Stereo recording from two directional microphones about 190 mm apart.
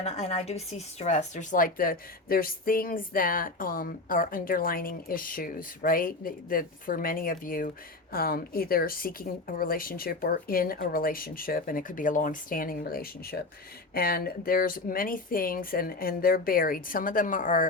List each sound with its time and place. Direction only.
0.0 s speech: 35° left (ahead or behind)